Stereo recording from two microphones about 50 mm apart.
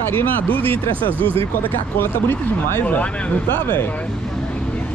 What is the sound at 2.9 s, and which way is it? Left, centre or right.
Speech, left.